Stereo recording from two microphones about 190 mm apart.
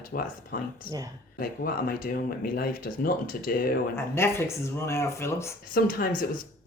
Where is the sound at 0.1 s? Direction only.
50° left (ahead or behind).